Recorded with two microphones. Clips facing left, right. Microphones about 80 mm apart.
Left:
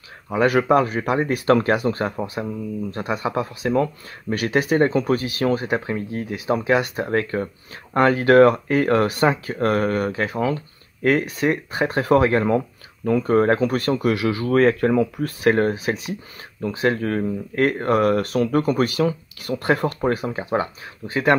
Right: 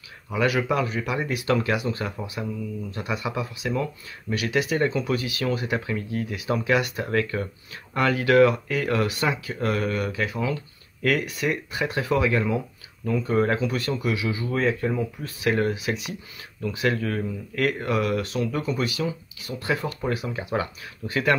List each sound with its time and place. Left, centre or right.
0.3 s speech: left